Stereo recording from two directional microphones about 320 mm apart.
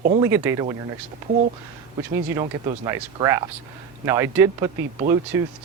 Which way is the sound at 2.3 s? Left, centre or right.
Centre.